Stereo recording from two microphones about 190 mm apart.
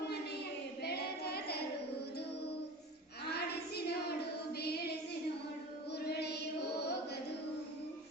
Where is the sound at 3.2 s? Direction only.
60° left (ahead or behind).